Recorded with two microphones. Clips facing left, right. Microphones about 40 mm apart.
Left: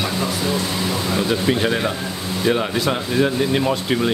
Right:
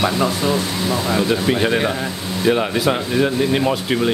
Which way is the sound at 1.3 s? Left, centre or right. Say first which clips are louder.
Left 1 dB; centre.